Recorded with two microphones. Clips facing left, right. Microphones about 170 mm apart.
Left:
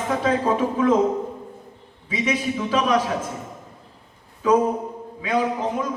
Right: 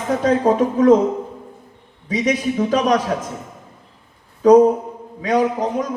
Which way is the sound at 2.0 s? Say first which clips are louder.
Right 5 dB; 40° right (ahead or behind).